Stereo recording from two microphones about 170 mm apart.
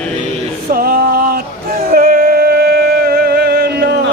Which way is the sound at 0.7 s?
60° right (ahead or behind).